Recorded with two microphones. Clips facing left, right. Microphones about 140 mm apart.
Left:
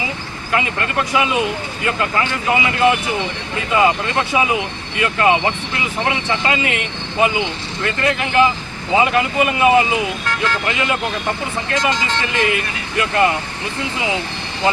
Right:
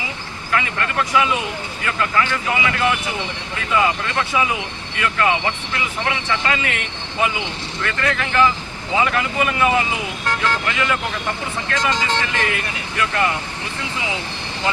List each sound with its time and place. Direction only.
0.5 s speech: 20° left (ahead or behind)
13.0 s speech: 20° left (ahead or behind)